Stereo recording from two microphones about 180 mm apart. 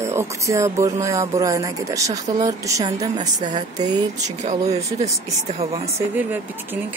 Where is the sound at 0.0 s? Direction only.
15° right (ahead or behind).